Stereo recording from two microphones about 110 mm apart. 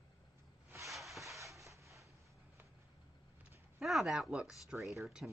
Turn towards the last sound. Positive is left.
turn(degrees=0)  # may be behind; listen again after turning